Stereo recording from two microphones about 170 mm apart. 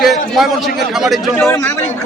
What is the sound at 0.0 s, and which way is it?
A man's voice, centre (ahead or behind).